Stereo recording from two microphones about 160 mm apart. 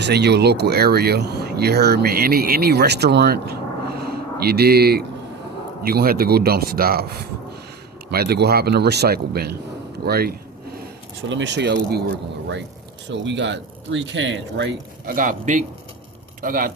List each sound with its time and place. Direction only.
0.0 s a man's voice: 90° right
10.1 s a sound: 75° right (ahead or behind)
11.4 s a man's voice: 90° right
13.1 s a man's voice: 90° right; by 16.7 s 60° right (ahead or behind)